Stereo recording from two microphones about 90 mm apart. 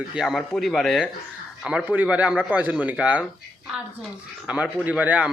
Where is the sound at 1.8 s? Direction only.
20° right (ahead or behind).